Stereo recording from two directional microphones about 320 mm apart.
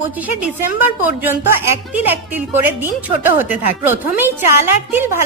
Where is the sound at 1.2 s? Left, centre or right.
Centre.